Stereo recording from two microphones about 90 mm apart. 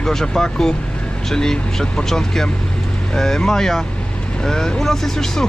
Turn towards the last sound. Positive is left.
turn(degrees=5)  # may be behind; listen again after turning